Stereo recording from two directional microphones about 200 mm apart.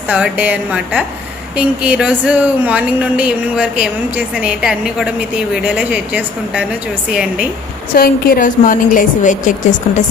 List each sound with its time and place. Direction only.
0.1 s a woman's voice: 5° right (ahead or behind)
7.9 s a woman's voice: 45° left (ahead or behind)